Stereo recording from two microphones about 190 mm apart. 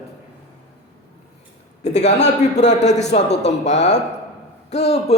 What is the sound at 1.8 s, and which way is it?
Speech, 35° left (ahead or behind).